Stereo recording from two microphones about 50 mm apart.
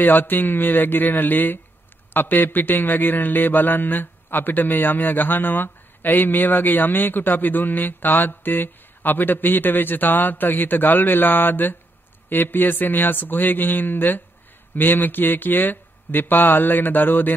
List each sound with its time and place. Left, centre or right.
0.0 s a man's voice: left